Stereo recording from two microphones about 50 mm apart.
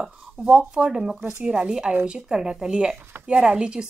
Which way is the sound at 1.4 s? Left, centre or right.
Centre.